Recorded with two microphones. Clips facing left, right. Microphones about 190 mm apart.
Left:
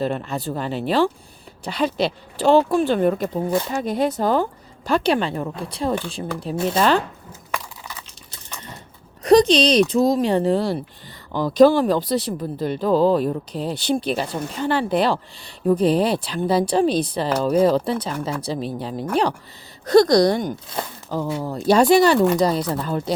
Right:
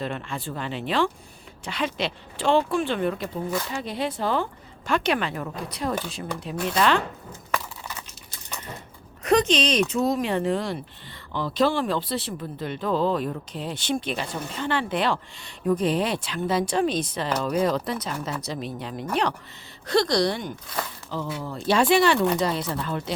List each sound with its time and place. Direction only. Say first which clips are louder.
0.0 s speech: left 7 dB; 40° left (ahead or behind)
9.2 s speech: left 7 dB; 35° left (ahead or behind)